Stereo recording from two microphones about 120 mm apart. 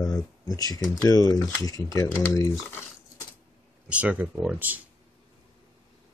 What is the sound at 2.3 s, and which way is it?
Speech, 25° left (ahead or behind).